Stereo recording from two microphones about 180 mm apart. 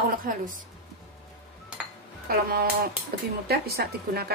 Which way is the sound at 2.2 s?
60° right (ahead or behind).